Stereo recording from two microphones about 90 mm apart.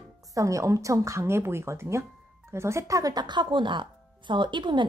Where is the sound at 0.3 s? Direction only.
35° right (ahead or behind).